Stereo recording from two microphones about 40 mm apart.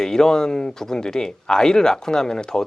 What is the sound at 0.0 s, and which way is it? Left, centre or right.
Speech, centre.